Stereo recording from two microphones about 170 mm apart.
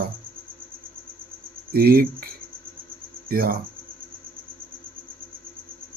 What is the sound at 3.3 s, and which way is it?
Speech, 60° right (ahead or behind).